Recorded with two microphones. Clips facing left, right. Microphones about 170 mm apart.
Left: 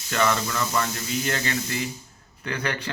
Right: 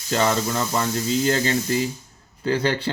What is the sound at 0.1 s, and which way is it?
Speech, 30° right (ahead or behind).